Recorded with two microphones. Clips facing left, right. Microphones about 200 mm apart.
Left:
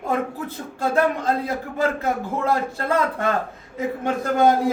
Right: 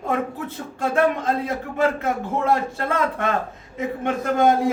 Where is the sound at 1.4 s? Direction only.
30° left (ahead or behind).